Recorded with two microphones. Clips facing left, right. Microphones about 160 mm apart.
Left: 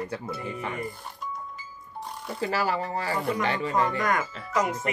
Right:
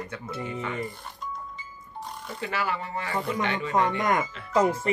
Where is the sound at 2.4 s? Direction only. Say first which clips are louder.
Left 3 dB; 35° left (ahead or behind).